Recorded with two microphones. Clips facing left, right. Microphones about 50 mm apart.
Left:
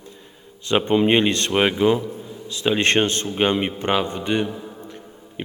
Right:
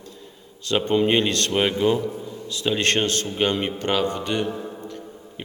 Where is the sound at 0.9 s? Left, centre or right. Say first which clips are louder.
Left 2 dB; left.